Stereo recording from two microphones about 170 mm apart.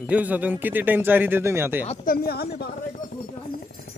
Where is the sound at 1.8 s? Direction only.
45° left (ahead or behind); by 2.7 s 65° left (ahead or behind).